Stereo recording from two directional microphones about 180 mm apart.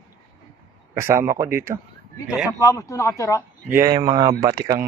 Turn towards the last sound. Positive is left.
turn(degrees=-20)  # may be behind; listen again after turning